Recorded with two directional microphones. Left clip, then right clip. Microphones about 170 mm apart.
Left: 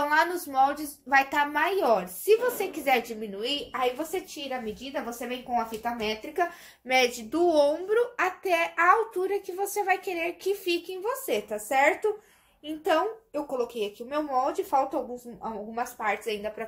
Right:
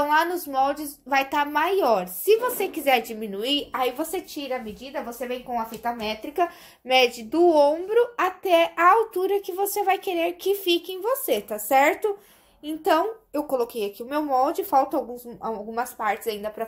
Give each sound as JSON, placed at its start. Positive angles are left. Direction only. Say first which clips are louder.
{"t": 0.0, "sound": "speech", "louder": "right 3 dB", "side_deg": -20}
{"t": 3.3, "sound": "a woman's voice", "louder": "right 5 dB", "side_deg": -55}
{"t": 4.9, "sound": "a woman's voice", "louder": "right 5 dB", "side_deg": -30}
{"t": 6.9, "sound": "speech", "louder": "right 4 dB", "side_deg": -25}